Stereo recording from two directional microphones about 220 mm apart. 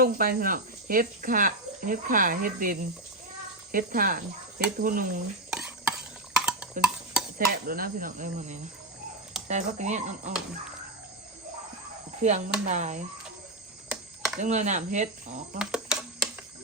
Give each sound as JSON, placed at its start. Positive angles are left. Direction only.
{"t": 0.0, "sound": "speech", "side_deg": -40}
{"t": 5.5, "sound": "stir", "side_deg": -5}
{"t": 7.3, "sound": "speech", "side_deg": -40}
{"t": 12.2, "sound": "speech", "side_deg": -30}
{"t": 13.8, "sound": "a sound", "side_deg": -5}
{"t": 14.3, "sound": "speech", "side_deg": -30}
{"t": 15.5, "sound": "a sound", "side_deg": -5}